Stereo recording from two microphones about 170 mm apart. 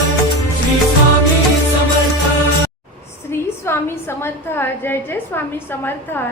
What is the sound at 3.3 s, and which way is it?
A woman's voice, 15° left (ahead or behind).